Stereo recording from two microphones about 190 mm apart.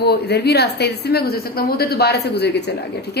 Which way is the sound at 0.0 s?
60° left (ahead or behind).